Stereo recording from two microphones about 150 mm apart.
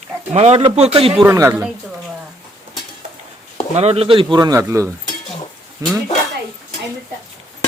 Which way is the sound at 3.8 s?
45° right (ahead or behind).